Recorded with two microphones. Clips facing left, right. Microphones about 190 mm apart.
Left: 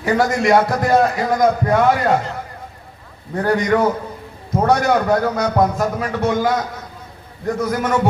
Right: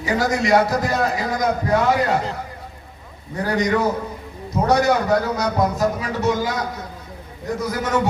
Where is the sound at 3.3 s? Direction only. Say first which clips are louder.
Left 4 dB; 55° left (ahead or behind).